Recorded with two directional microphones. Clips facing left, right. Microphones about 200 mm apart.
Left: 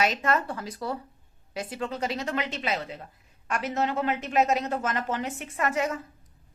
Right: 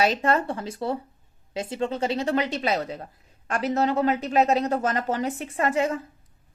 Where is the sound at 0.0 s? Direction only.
30° right (ahead or behind).